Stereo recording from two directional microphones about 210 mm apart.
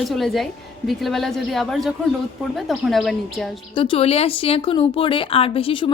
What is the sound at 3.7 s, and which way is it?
Speech, 25° left (ahead or behind).